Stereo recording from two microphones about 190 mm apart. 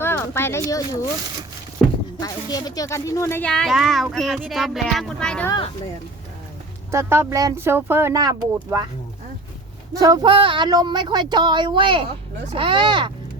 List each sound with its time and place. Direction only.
0.0 s speech: 10° left (ahead or behind)
2.2 s a child's voice: 20° left (ahead or behind); by 5.5 s 5° left (ahead or behind)
6.9 s speech: 15° right (ahead or behind)
10.0 s speech: 20° right (ahead or behind)